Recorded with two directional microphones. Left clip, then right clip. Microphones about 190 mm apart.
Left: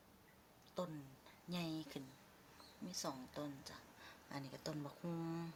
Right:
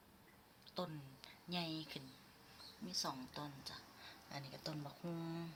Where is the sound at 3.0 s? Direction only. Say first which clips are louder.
Left 1 dB; 25° left (ahead or behind).